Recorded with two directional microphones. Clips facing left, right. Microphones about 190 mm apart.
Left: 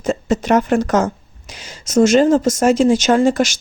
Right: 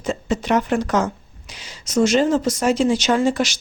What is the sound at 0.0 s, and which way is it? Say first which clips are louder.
A woman's voice: left 5 dB; 45° left (ahead or behind).